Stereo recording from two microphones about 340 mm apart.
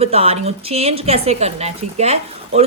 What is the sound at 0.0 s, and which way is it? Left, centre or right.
Speech, centre.